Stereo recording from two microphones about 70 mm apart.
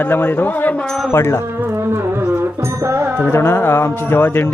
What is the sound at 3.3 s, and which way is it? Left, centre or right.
A man's voice, left.